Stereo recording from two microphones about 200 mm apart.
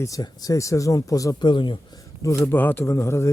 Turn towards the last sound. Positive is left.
turn(degrees=15)  # may be behind; listen again after turning